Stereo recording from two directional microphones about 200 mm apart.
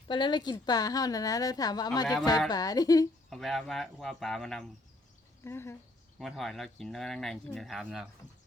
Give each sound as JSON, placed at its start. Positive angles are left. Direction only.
{"t": 0.1, "sound": "a woman's voice", "side_deg": 20}
{"t": 3.2, "sound": "speech", "side_deg": 0}
{"t": 5.4, "sound": "speech", "side_deg": 15}
{"t": 6.1, "sound": "speech", "side_deg": 0}